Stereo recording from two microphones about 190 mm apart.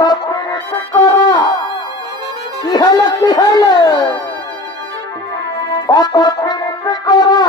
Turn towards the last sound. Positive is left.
turn(degrees=20)  # may be behind; listen again after turning